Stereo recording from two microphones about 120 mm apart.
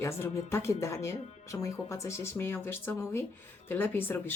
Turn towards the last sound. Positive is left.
turn(degrees=20)  # may be behind; listen again after turning